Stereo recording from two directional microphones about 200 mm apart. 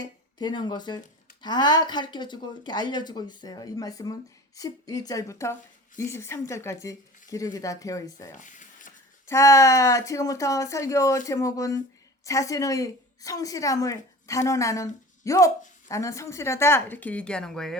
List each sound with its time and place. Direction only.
0.0 s a woman's voice: 20° left (ahead or behind)
8.3 s a sound: 40° left (ahead or behind)
9.2 s a woman's voice: 15° left (ahead or behind)